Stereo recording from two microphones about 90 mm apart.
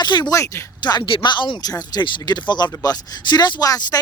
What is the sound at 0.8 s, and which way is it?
Speech, 50° left (ahead or behind).